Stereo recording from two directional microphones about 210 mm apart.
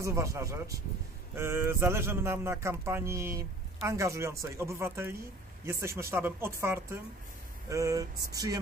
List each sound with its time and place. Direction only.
0.0 s speech: 15° right (ahead or behind)